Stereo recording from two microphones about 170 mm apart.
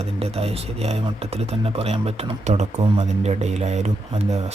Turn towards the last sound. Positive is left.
turn(degrees=-40)  # may be behind; listen again after turning